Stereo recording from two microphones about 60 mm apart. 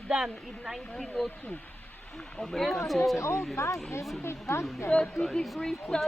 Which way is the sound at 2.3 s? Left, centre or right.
Centre.